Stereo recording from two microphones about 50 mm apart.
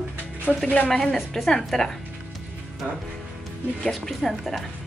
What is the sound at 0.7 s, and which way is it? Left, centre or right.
Speech, left.